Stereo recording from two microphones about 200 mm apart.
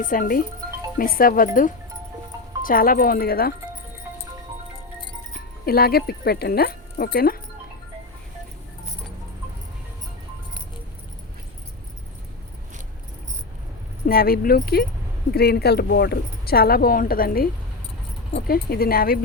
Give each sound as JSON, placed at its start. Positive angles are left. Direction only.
{"t": 0.0, "sound": "speech", "side_deg": 45}
{"t": 2.6, "sound": "speech", "side_deg": 45}
{"t": 5.6, "sound": "speech", "side_deg": 50}
{"t": 14.1, "sound": "speech", "side_deg": 50}